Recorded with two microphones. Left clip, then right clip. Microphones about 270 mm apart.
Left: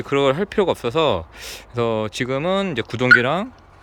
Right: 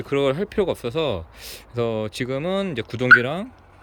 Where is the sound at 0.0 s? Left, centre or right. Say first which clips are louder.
Left 3 dB; centre.